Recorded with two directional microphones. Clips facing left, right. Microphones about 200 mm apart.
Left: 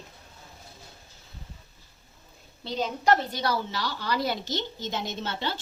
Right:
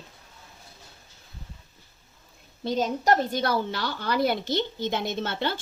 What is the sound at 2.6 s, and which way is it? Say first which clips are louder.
A woman's voice: right 2 dB; 45° right (ahead or behind).